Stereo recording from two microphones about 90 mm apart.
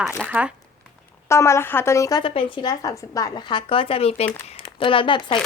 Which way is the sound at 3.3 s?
60° left (ahead or behind).